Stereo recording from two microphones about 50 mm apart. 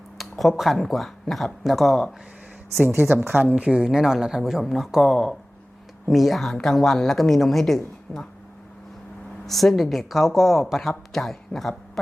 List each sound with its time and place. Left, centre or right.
0.2 s a sound: centre
0.5 s speech: centre
2.9 s a woman's voice: right
3.5 s speech: centre
9.5 s speech: centre